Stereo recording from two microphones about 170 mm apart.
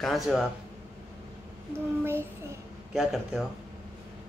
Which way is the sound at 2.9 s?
Centre (ahead or behind).